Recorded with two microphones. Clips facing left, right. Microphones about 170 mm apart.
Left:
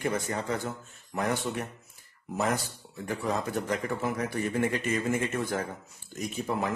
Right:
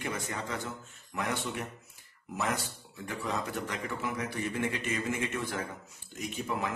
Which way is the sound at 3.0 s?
40° left (ahead or behind).